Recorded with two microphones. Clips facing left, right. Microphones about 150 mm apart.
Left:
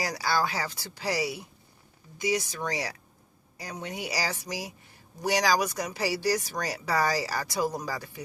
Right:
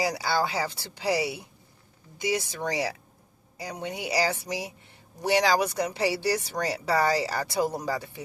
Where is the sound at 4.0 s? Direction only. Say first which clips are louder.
Right 7 dB; 25° right (ahead or behind).